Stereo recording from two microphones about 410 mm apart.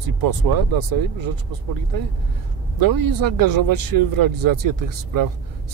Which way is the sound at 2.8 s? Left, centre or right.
Right.